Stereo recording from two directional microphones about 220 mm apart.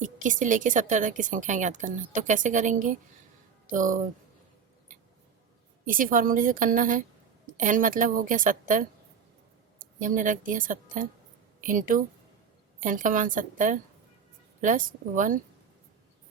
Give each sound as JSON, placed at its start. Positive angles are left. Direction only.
{"t": 0.0, "sound": "a woman's voice", "side_deg": -35}
{"t": 5.8, "sound": "a woman's voice", "side_deg": -40}
{"t": 10.0, "sound": "a woman's voice", "side_deg": -35}